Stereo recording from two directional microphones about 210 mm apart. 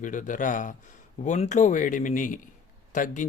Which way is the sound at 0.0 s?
40° left (ahead or behind).